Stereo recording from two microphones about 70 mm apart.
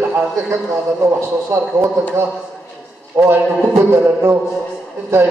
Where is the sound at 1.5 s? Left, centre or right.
Right.